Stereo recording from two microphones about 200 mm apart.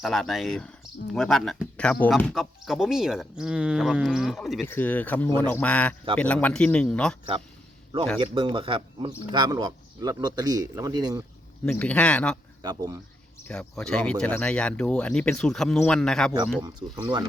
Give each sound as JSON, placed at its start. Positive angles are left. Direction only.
{"t": 0.0, "sound": "speech", "side_deg": 0}
{"t": 4.6, "sound": "speech", "side_deg": 10}
{"t": 8.2, "sound": "speech", "side_deg": -25}
{"t": 11.6, "sound": "speech", "side_deg": 10}
{"t": 12.6, "sound": "speech", "side_deg": -20}
{"t": 13.5, "sound": "speech", "side_deg": 5}
{"t": 16.6, "sound": "speech", "side_deg": -20}